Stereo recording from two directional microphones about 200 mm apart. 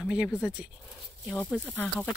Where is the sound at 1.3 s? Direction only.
5° left (ahead or behind).